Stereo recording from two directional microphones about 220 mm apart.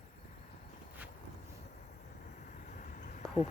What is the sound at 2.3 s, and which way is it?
Vehicle, 35° left (ahead or behind).